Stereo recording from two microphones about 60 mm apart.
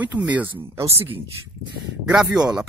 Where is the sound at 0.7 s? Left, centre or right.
Right.